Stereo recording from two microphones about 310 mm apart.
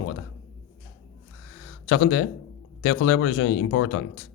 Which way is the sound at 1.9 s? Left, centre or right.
Left.